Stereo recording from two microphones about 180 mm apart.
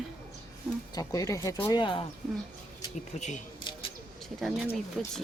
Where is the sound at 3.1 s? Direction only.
40° left (ahead or behind).